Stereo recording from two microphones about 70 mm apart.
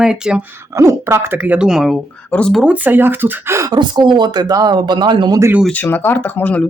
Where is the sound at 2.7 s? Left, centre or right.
Right.